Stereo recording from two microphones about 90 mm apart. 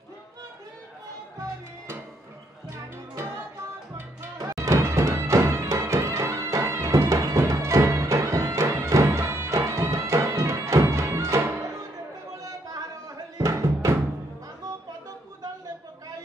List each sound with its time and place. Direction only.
3.9 s music: 30° right (ahead or behind)
12.4 s a sound: 40° right (ahead or behind)
13.4 s music: 35° right (ahead or behind)